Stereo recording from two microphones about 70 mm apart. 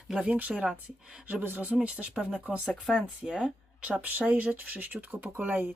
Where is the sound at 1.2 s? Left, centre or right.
Right.